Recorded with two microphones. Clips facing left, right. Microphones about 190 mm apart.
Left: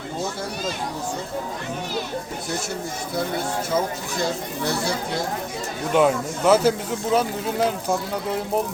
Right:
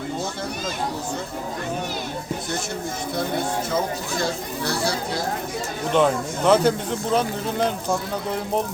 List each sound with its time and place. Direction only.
4.6 s speech: 25° left (ahead or behind)
5.9 s speech: 5° left (ahead or behind)